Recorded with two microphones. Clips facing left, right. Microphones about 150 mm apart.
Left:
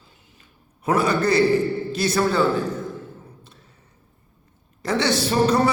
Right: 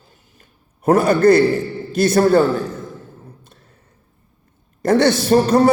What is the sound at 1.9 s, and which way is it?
Speech, 50° right (ahead or behind).